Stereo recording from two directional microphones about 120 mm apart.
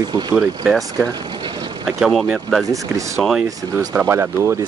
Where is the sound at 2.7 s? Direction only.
25° right (ahead or behind).